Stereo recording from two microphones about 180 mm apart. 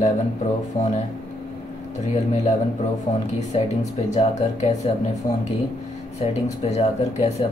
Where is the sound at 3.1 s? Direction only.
35° left (ahead or behind).